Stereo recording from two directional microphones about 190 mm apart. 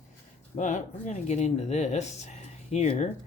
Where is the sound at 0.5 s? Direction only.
40° left (ahead or behind).